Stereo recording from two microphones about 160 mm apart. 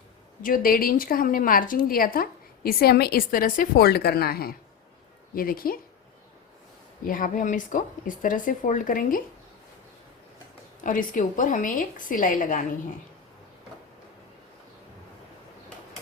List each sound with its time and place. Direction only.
0.4 s a woman's voice: 60° left (ahead or behind)
7.0 s a woman's voice: 60° left (ahead or behind)
10.8 s a woman's voice: 55° left (ahead or behind)